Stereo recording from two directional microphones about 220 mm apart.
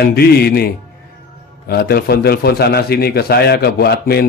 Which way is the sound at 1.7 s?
45° left (ahead or behind).